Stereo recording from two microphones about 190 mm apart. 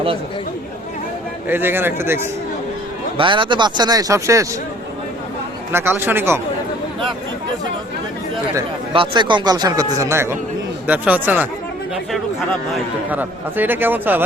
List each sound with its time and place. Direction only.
1.5 s a man's voice: 10° right (ahead or behind)
3.2 s a man's voice: 25° right (ahead or behind)
5.7 s a man's voice: 10° right (ahead or behind)
8.9 s a man's voice: 25° right (ahead or behind); by 11.4 s 10° right (ahead or behind)
13.1 s a man's voice: 10° right (ahead or behind)